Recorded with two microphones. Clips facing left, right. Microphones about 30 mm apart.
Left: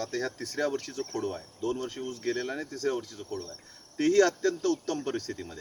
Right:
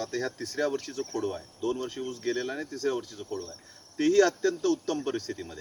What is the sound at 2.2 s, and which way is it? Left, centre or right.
Speech, right.